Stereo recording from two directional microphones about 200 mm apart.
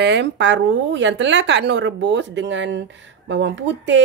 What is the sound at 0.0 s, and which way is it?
Speech, 60° right (ahead or behind).